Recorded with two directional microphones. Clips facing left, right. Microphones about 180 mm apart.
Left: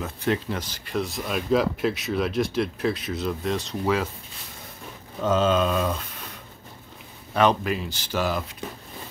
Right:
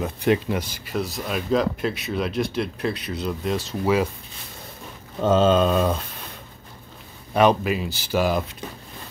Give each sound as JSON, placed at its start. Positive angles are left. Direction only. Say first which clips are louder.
{"t": 0.0, "sound": "speech", "louder": "right 5 dB", "side_deg": -15}
{"t": 5.2, "sound": "speech", "louder": "right 4 dB", "side_deg": -30}
{"t": 7.3, "sound": "speech", "louder": "right 3 dB", "side_deg": -10}